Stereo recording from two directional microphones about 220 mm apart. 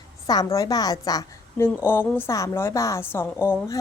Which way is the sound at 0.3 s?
15° left (ahead or behind).